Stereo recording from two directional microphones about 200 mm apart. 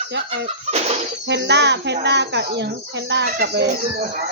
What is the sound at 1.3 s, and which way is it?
Speech, 60° right (ahead or behind).